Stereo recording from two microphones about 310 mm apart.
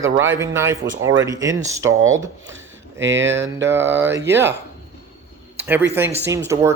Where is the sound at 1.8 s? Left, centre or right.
Right.